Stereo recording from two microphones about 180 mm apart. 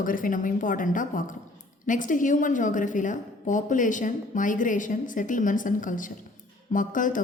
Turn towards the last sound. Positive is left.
turn(degrees=45)  # may be behind; listen again after turning